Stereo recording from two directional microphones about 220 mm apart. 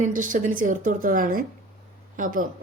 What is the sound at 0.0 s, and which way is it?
Speech, 35° right (ahead or behind).